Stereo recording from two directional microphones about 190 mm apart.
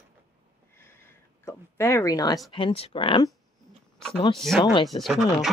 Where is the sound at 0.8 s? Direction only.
10° left (ahead or behind).